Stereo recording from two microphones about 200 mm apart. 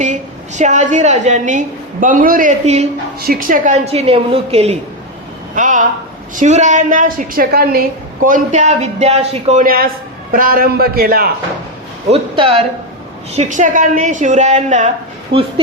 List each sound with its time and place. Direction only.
0.0 s a woman's voice: 35° right (ahead or behind)
5.5 s a woman's voice: 40° right (ahead or behind)
12.1 s a woman's voice: 30° right (ahead or behind)